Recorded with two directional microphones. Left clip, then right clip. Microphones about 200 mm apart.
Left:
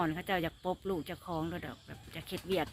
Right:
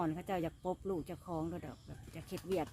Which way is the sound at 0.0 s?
Centre (ahead or behind).